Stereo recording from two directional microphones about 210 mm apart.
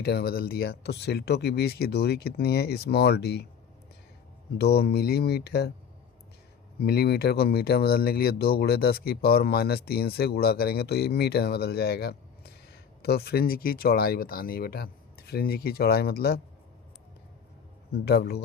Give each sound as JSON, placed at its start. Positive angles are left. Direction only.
{"t": 0.0, "sound": "speech", "side_deg": 50}
{"t": 4.5, "sound": "speech", "side_deg": 50}
{"t": 6.7, "sound": "speech", "side_deg": 50}
{"t": 17.9, "sound": "speech", "side_deg": 50}